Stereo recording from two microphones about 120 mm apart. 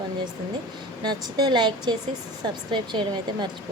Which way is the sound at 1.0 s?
35° right (ahead or behind).